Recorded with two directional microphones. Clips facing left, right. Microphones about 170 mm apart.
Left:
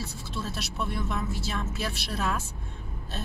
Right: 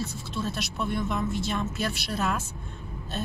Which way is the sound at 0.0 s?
Centre (ahead or behind).